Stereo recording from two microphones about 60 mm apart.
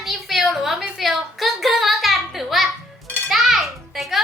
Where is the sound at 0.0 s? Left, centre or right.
Centre.